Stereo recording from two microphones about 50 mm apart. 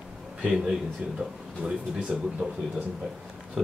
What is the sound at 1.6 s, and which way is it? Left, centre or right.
Speech, centre.